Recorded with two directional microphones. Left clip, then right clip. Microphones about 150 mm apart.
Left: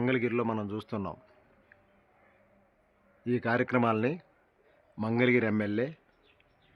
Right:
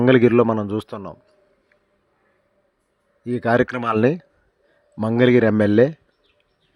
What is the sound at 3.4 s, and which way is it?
Speech, 85° right.